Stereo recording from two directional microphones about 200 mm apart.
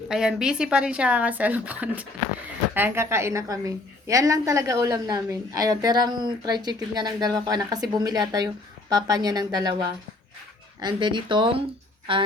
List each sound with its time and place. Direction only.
0.1 s a woman's voice: 5° right (ahead or behind); by 9.6 s 20° right (ahead or behind)
10.8 s a woman's voice: 20° right (ahead or behind)